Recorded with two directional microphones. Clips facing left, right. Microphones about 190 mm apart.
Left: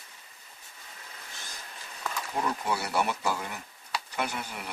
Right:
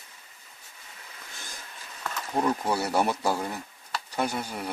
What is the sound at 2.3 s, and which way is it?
Speech, 40° right (ahead or behind).